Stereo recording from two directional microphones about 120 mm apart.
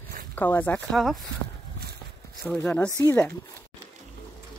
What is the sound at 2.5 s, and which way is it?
Speech, 10° left (ahead or behind).